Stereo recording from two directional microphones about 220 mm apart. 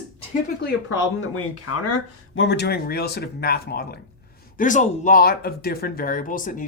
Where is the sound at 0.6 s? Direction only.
60° left (ahead or behind).